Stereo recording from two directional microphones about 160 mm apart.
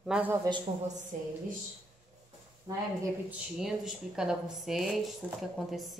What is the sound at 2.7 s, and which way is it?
Speech, 25° right (ahead or behind).